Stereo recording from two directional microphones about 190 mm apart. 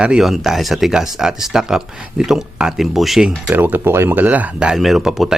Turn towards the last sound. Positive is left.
turn(degrees=-5)  # may be behind; listen again after turning